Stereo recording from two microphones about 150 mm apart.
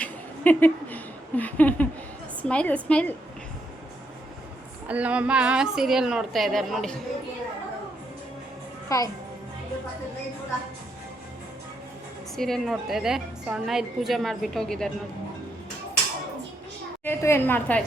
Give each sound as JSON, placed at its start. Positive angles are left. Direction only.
{"t": 0.0, "sound": "a sound", "side_deg": 10}
{"t": 2.4, "sound": "a woman's voice", "side_deg": 10}
{"t": 4.9, "sound": "a woman's voice", "side_deg": -10}
{"t": 8.9, "sound": "a child's voice", "side_deg": 20}
{"t": 12.4, "sound": "a woman's voice", "side_deg": 0}
{"t": 17.0, "sound": "a woman's voice", "side_deg": 15}